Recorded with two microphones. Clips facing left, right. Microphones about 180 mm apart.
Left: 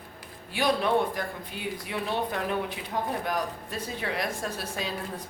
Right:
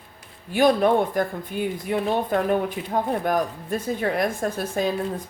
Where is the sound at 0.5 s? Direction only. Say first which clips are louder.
Right 7 dB; 50° right (ahead or behind).